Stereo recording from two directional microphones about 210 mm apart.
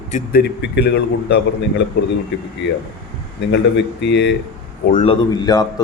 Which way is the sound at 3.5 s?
55° left (ahead or behind).